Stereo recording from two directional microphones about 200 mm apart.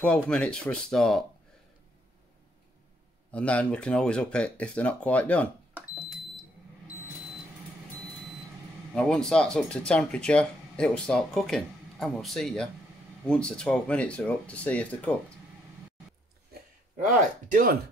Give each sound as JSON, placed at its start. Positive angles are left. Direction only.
{"t": 0.0, "sound": "speech", "side_deg": 5}
{"t": 3.3, "sound": "speech", "side_deg": 5}
{"t": 8.9, "sound": "speech", "side_deg": 5}
{"t": 17.0, "sound": "speech", "side_deg": -40}